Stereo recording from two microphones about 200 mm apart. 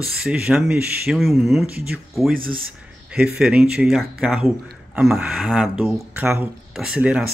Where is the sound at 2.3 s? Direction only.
45° right (ahead or behind).